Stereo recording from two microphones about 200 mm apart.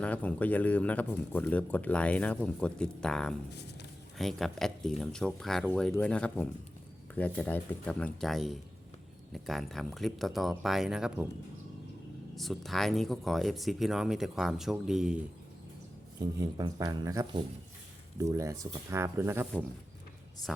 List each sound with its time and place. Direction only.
0.0 s speech: 5° left (ahead or behind)
12.4 s speech: centre (ahead or behind)
16.4 s speech: 20° right (ahead or behind)